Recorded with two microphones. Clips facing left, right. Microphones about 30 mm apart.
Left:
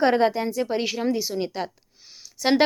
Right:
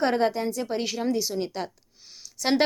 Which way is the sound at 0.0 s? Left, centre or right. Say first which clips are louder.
Left 3 dB; centre.